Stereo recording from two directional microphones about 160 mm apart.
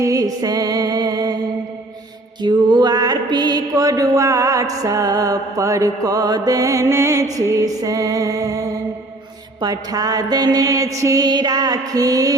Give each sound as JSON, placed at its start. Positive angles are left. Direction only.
{"t": 0.0, "sound": "music", "side_deg": -20}
{"t": 2.4, "sound": "mantra", "side_deg": -25}